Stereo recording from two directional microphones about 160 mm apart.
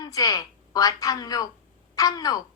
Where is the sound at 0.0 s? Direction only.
20° left (ahead or behind).